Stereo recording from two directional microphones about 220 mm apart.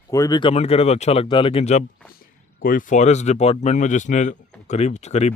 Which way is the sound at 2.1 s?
40° left (ahead or behind).